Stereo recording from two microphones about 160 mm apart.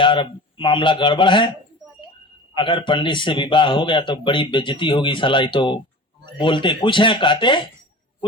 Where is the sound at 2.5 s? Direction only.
30° left (ahead or behind).